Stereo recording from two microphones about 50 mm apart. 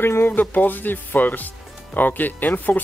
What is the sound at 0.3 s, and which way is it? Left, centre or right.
Speech, left.